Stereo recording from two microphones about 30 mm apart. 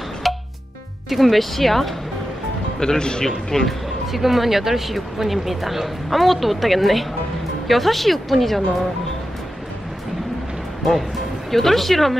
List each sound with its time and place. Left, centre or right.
0.2 s music: centre
1.1 s speech: centre
2.8 s a man's voice: left
4.1 s speech: centre
11.5 s speech: centre